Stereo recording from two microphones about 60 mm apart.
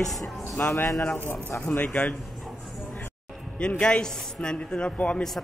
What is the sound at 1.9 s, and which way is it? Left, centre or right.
Speech, left.